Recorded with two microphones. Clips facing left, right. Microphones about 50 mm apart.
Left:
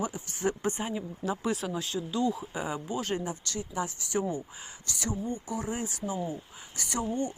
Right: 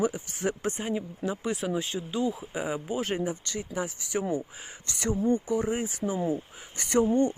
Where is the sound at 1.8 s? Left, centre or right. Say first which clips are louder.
Even; right.